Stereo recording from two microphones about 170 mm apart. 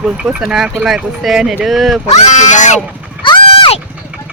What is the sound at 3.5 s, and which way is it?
Vehicle, 30° left (ahead or behind).